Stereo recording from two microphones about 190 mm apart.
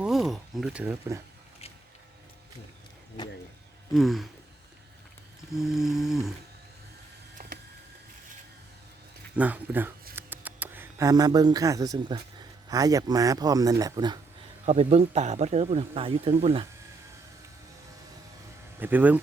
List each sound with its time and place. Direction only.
0.0 s speech: centre (ahead or behind)
3.9 s a sound: centre (ahead or behind)
5.5 s a sound: centre (ahead or behind)
9.3 s speech: 10° right (ahead or behind)
14.6 s speech: 35° right (ahead or behind)
18.8 s speech: 10° right (ahead or behind)